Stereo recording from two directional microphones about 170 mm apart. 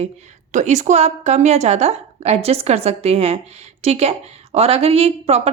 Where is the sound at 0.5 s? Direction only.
45° right (ahead or behind).